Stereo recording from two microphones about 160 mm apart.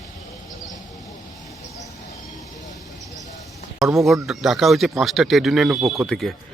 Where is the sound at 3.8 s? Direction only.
Centre (ahead or behind).